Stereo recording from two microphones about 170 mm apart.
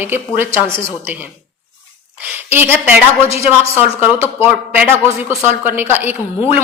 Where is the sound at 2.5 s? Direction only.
15° right (ahead or behind).